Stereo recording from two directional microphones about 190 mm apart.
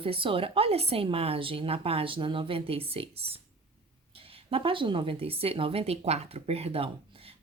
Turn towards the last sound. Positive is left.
turn(degrees=-30)  # may be behind; listen again after turning